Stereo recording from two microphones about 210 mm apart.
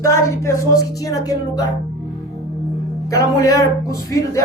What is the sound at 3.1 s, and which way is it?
A woman's voice, 15° left (ahead or behind).